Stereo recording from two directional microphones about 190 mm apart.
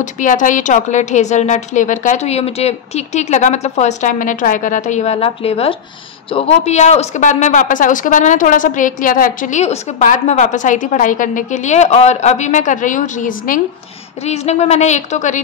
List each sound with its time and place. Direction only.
0.0 s speech: 40° left (ahead or behind)